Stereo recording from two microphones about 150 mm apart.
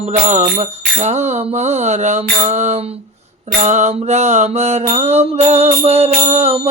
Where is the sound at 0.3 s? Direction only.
50° right (ahead or behind).